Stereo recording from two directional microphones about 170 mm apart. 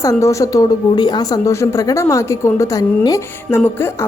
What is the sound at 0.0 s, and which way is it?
A woman's voice, 15° left (ahead or behind).